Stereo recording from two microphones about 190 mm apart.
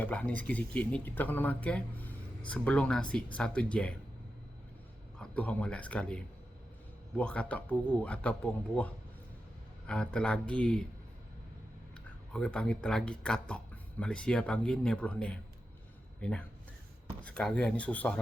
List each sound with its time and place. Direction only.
0.0 s speech: 5° left (ahead or behind)
5.2 s speech: 5° left (ahead or behind)
12.3 s speech: 5° left (ahead or behind)
17.2 s speech: 5° left (ahead or behind)